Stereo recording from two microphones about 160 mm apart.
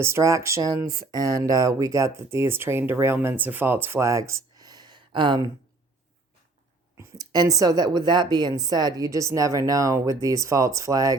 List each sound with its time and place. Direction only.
0.0 s speech: 15° right (ahead or behind)
6.9 s speech: 20° right (ahead or behind)